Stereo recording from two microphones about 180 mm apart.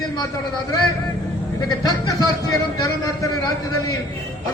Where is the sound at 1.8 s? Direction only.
20° left (ahead or behind).